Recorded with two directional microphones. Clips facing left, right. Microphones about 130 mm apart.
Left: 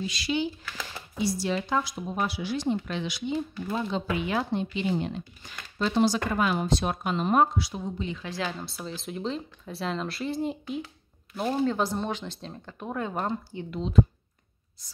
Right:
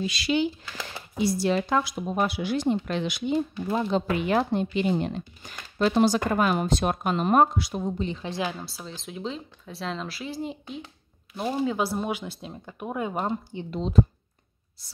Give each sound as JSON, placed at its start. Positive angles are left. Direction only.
{"t": 0.0, "sound": "speech", "side_deg": -70}
{"t": 1.1, "sound": "a woman's voice", "side_deg": -55}
{"t": 8.0, "sound": "a woman's voice", "side_deg": -30}
{"t": 8.5, "sound": "speech", "side_deg": 0}
{"t": 13.7, "sound": "speech", "side_deg": -35}